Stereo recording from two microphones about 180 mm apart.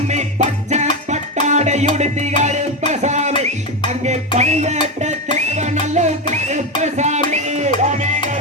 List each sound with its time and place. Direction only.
0.1 s music: 40° right (ahead or behind)
6.3 s a sound: 40° right (ahead or behind)
7.3 s music: 40° right (ahead or behind)